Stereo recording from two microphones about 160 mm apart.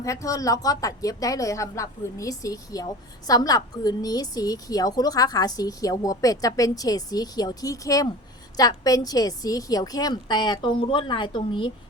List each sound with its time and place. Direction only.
0.0 s speech: 20° left (ahead or behind)